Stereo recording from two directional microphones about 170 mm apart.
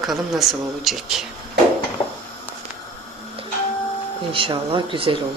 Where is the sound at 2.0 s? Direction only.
25° left (ahead or behind).